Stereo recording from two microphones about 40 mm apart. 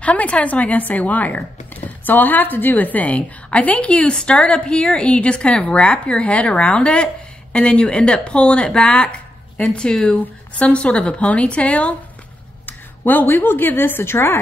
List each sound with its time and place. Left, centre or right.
0.0 s a woman's voice: left
10.0 s a woman's voice: left
10.6 s a woman's voice: left
12.6 s a woman's voice: left